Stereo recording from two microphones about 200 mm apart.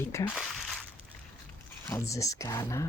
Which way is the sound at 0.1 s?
15° left (ahead or behind).